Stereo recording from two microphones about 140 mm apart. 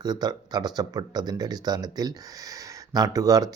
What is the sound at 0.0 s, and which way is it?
Speech, 30° right (ahead or behind).